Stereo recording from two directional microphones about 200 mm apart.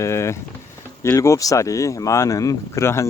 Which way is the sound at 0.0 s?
15° left (ahead or behind).